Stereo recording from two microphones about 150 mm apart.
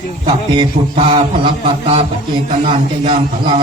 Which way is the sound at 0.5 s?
35° right (ahead or behind).